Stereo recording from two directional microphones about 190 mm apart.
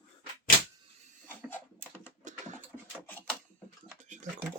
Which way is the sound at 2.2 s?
40° right (ahead or behind).